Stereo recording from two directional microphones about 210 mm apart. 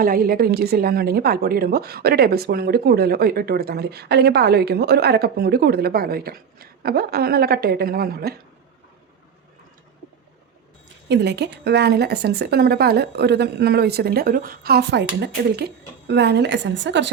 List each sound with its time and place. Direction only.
0.0 s a woman's voice: 45° right (ahead or behind)
11.1 s a woman's voice: 50° right (ahead or behind)